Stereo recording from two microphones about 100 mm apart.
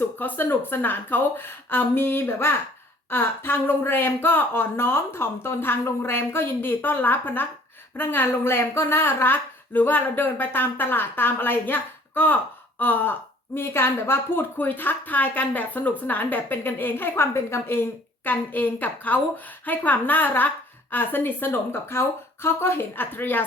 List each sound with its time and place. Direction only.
0.2 s a woman's voice: 20° left (ahead or behind)